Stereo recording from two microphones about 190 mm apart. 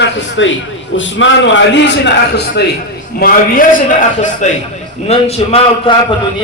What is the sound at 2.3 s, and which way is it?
Speech, 60° left (ahead or behind).